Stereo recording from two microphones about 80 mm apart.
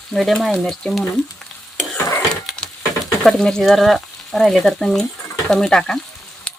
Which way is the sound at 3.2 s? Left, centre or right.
Centre.